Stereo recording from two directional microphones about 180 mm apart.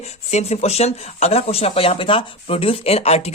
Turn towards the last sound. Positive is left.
turn(degrees=35)  # may be behind; listen again after turning